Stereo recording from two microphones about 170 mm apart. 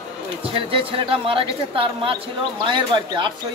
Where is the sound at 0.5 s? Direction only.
35° right (ahead or behind).